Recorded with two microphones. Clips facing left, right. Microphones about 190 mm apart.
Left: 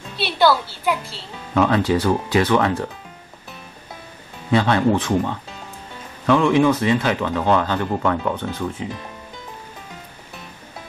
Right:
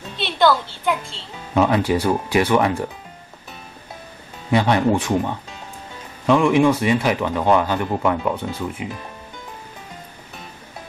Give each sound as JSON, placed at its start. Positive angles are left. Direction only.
{"t": 0.2, "sound": "a sound", "side_deg": 5}
{"t": 1.5, "sound": "speech", "side_deg": -15}
{"t": 4.5, "sound": "speech", "side_deg": -15}